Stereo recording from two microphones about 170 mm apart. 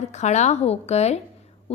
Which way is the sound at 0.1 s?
40° left (ahead or behind).